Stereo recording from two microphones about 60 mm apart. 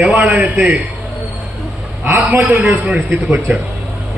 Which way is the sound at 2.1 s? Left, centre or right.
Right.